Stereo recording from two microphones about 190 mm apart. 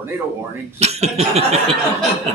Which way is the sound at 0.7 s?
35° right (ahead or behind).